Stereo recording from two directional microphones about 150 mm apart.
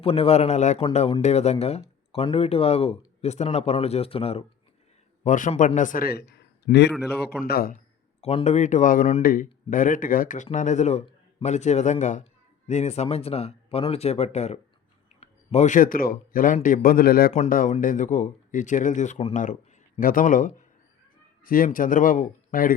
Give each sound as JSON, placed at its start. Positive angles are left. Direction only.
{"t": 0.0, "sound": "speech", "side_deg": 40}
{"t": 5.2, "sound": "a man's voice", "side_deg": 55}
{"t": 8.2, "sound": "speech", "side_deg": 45}
{"t": 17.3, "sound": "speech", "side_deg": 60}
{"t": 21.4, "sound": "speech", "side_deg": 70}